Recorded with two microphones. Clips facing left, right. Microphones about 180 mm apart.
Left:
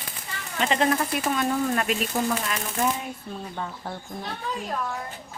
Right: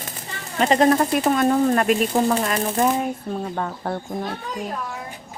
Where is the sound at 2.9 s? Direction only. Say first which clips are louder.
Right 10 dB; 60° right (ahead or behind).